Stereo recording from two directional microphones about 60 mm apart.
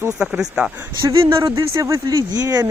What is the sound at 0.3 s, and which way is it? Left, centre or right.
Speech, centre.